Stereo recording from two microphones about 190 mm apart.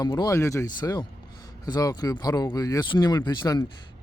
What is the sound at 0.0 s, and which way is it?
Speech, 20° left (ahead or behind).